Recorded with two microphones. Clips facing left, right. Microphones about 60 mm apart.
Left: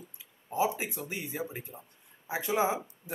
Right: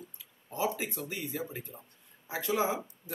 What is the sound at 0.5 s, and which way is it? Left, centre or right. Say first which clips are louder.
A man's voice: left 3 dB; centre.